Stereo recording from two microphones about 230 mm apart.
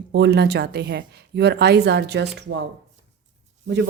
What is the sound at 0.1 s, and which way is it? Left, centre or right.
Speech, right.